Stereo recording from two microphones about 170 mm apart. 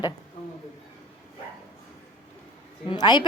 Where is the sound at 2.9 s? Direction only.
25° left (ahead or behind).